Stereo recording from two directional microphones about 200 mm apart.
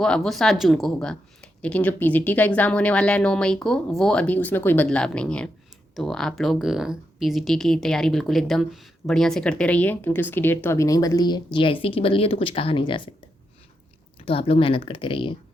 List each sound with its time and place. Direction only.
0.0 s speech: centre (ahead or behind); by 13.0 s 25° left (ahead or behind)
14.2 s speech: 25° left (ahead or behind)